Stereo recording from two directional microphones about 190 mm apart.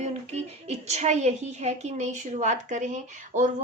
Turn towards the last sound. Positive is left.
turn(degrees=-40)  # may be behind; listen again after turning